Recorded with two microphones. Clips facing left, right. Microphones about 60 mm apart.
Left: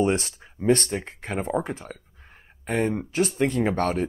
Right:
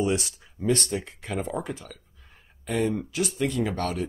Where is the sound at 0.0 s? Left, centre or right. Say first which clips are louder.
Left 3 dB; left.